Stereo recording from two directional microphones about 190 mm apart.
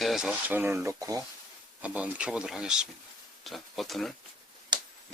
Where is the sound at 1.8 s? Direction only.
5° right (ahead or behind).